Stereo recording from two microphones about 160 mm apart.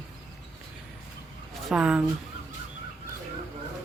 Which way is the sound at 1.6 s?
5° right (ahead or behind).